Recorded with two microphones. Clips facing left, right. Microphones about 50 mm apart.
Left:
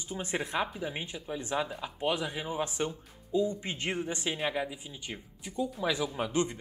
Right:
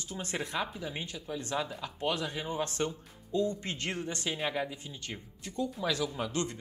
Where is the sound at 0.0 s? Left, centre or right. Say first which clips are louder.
Left 2 dB; centre.